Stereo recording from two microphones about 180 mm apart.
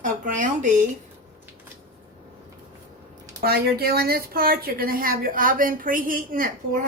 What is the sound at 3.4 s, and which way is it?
A woman's voice, 60° right (ahead or behind).